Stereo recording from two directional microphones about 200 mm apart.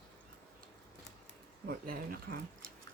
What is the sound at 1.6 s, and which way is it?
Speech, 45° right (ahead or behind).